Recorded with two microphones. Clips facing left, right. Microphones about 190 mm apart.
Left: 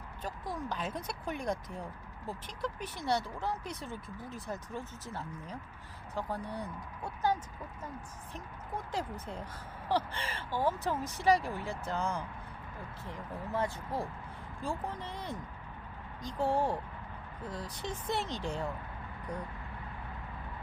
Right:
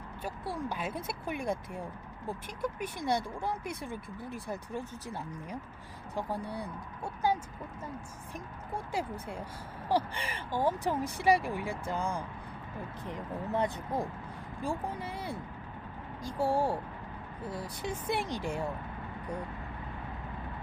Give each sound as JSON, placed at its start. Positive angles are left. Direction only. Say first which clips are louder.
{"t": 0.2, "sound": "speech", "louder": "right 2 dB", "side_deg": -10}